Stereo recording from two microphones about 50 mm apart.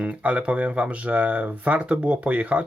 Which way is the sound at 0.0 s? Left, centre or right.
Right.